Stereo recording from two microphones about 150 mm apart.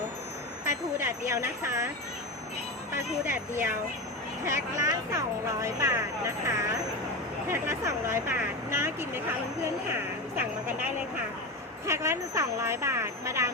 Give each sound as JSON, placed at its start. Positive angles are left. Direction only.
{"t": 0.6, "sound": "vehicle", "side_deg": -20}
{"t": 4.4, "sound": "speech", "side_deg": -20}
{"t": 11.9, "sound": "speech", "side_deg": -20}